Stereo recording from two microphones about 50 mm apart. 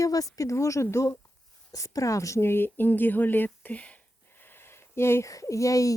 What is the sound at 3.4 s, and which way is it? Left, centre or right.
Speech, left.